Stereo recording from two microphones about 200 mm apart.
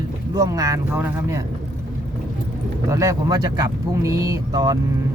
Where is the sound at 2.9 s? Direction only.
15° right (ahead or behind).